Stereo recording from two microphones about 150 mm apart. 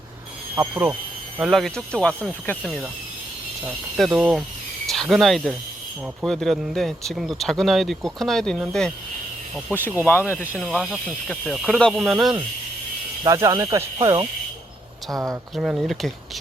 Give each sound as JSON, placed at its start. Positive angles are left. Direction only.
{"t": 0.5, "sound": "speech", "side_deg": -15}
{"t": 1.4, "sound": "speech", "side_deg": 0}
{"t": 4.2, "sound": "speech", "side_deg": 0}
{"t": 9.7, "sound": "speech", "side_deg": -15}
{"t": 10.0, "sound": "speech", "side_deg": 15}
{"t": 10.6, "sound": "speech", "side_deg": 0}
{"t": 13.2, "sound": "speech", "side_deg": -20}
{"t": 15.5, "sound": "speech", "side_deg": 0}